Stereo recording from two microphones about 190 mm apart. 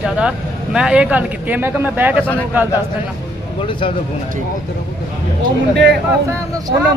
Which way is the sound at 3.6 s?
25° left (ahead or behind).